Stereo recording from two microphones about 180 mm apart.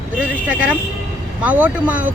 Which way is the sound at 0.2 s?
5° right (ahead or behind).